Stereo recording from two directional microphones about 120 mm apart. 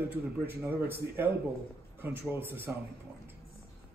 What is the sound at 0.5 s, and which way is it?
Speech, 15° right (ahead or behind).